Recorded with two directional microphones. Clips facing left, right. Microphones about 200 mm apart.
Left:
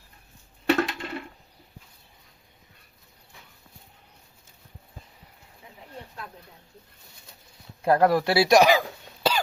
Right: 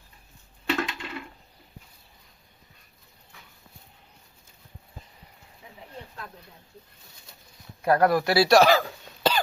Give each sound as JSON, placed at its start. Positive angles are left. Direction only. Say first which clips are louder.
{"t": 0.7, "sound": "coin", "louder": "left 5 dB", "side_deg": 40}
{"t": 7.8, "sound": "cough", "louder": "left 1 dB", "side_deg": 25}